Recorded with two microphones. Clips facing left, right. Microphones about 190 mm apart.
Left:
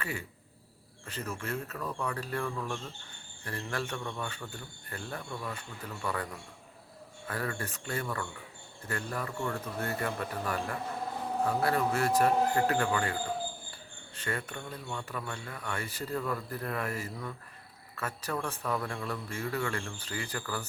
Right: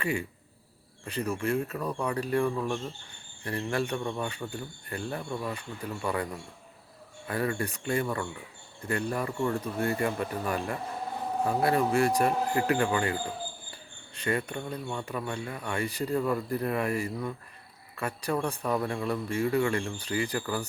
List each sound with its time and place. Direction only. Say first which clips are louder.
0.0 s a man's voice: right 8 dB; 15° right (ahead or behind)
7.3 s a man's voice: right 6 dB; 15° right (ahead or behind)
14.2 s a man's voice: right 6 dB; 15° right (ahead or behind)